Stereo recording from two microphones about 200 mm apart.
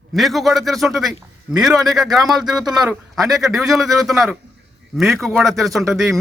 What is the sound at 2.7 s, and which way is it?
Speech, 20° right (ahead or behind).